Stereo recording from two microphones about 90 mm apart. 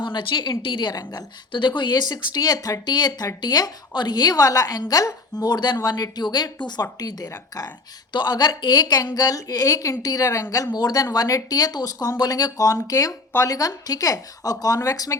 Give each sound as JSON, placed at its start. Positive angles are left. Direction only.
{"t": 0.0, "sound": "a woman's voice", "side_deg": 60}
{"t": 8.1, "sound": "a woman's voice", "side_deg": 55}